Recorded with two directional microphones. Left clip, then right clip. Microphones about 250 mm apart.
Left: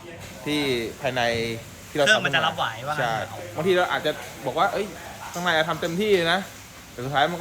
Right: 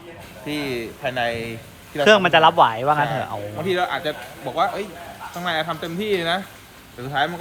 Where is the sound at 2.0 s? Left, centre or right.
Right.